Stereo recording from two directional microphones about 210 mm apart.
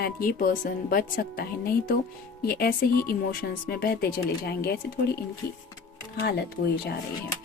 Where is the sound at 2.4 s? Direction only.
45° left (ahead or behind).